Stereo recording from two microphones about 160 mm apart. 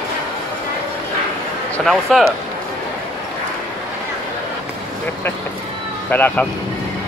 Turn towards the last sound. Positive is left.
turn(degrees=10)  # may be behind; listen again after turning